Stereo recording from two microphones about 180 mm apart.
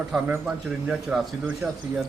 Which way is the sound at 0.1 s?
5° right (ahead or behind).